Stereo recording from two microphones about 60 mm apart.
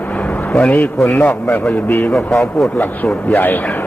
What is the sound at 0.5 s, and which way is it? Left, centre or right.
Speech, left.